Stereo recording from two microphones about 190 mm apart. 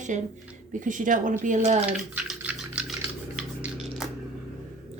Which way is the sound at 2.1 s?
5° right (ahead or behind).